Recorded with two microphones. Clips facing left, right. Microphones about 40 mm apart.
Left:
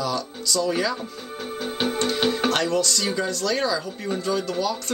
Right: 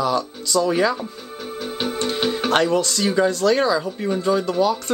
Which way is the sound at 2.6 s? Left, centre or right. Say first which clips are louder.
Right 4 dB; right.